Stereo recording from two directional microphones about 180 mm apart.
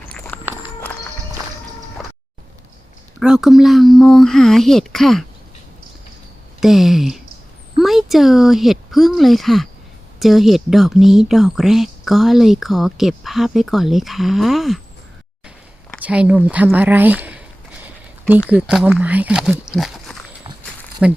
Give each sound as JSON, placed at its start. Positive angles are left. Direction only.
{"t": 0.3, "sound": "walk", "side_deg": 10}
{"t": 2.0, "sound": "music", "side_deg": 0}
{"t": 3.2, "sound": "speech", "side_deg": -5}
{"t": 6.6, "sound": "speech", "side_deg": 0}
{"t": 15.4, "sound": "a sound", "side_deg": -5}
{"t": 18.4, "sound": "speech", "side_deg": -5}